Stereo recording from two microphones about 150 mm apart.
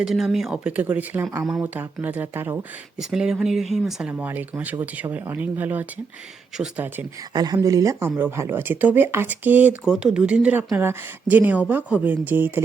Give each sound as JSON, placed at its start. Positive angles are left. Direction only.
{"t": 0.0, "sound": "speech", "side_deg": 0}
{"t": 3.0, "sound": "speech", "side_deg": -5}
{"t": 4.1, "sound": "speech", "side_deg": -15}
{"t": 7.3, "sound": "speech", "side_deg": -25}